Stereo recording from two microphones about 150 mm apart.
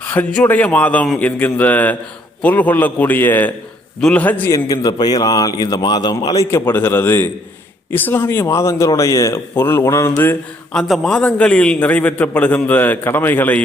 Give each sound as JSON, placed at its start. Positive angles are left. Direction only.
{"t": 0.0, "sound": "a man's voice", "side_deg": 10}
{"t": 10.7, "sound": "a man's voice", "side_deg": 0}